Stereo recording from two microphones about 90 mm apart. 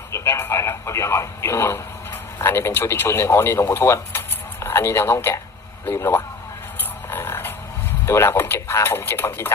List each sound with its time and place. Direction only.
0.1 s speech: 25° left (ahead or behind)
6.7 s a sound: 25° left (ahead or behind)
8.0 s speech: 30° left (ahead or behind)